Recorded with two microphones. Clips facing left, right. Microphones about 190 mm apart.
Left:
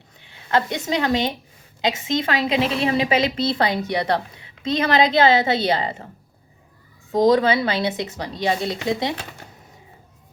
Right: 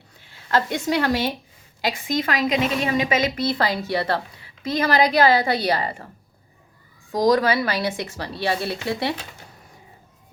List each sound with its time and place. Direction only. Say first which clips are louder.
0.2 s a woman's voice: left 1 dB; 20° left (ahead or behind)
7.1 s a woman's voice: left 2 dB; 25° left (ahead or behind)